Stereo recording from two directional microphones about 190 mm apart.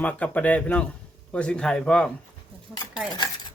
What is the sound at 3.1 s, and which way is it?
Cutlery, 20° left (ahead or behind).